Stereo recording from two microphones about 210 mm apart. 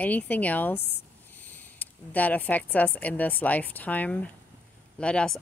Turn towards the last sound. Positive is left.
turn(degrees=5)  # may be behind; listen again after turning